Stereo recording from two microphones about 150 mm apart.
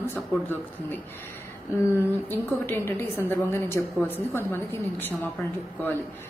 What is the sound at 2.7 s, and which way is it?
A woman's voice, 15° left (ahead or behind).